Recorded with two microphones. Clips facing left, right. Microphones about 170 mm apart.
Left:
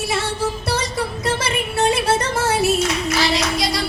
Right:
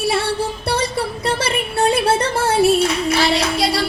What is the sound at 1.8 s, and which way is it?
Music, 30° right (ahead or behind).